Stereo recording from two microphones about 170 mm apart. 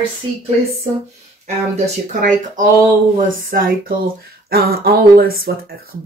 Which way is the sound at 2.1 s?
50° right (ahead or behind).